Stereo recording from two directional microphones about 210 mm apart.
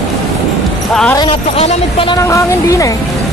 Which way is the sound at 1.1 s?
25° left (ahead or behind).